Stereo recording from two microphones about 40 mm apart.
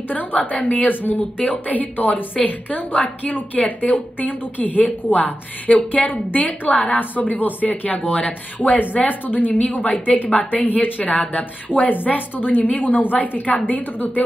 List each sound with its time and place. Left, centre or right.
0.1 s a woman's voice: left